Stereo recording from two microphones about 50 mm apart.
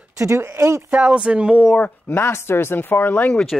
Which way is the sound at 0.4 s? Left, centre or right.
Right.